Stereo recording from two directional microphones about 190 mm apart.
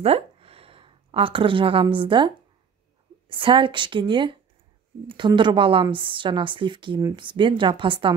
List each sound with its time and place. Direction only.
0.0 s a woman's voice: 30° right (ahead or behind)